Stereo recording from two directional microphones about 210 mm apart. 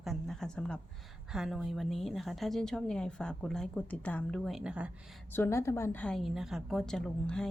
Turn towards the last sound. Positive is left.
turn(degrees=5)  # may be behind; listen again after turning